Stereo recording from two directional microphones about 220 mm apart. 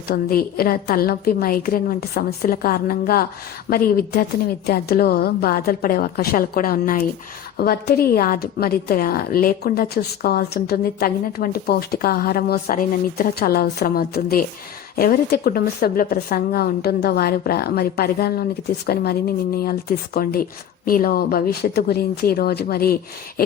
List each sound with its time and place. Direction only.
0.1 s a woman's voice: 45° left (ahead or behind)
20.1 s a woman's voice: 40° left (ahead or behind)